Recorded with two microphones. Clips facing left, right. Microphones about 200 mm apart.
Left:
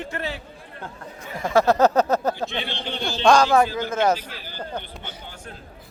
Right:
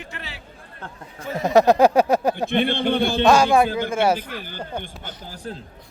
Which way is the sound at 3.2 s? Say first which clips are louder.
Left 1 dB; 10° right (ahead or behind).